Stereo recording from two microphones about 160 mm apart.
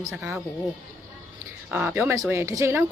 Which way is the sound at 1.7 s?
10° right (ahead or behind).